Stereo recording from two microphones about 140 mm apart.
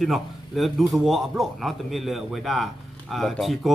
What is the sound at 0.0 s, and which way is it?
A man's voice, centre (ahead or behind).